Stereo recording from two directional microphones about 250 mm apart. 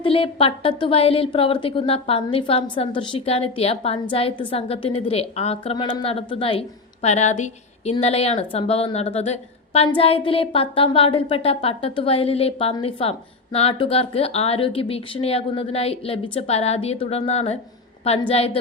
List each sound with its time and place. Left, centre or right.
0.0 s a woman's voice: left